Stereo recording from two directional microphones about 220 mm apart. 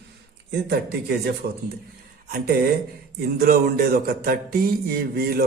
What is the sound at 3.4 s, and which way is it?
A man's voice, 45° right (ahead or behind).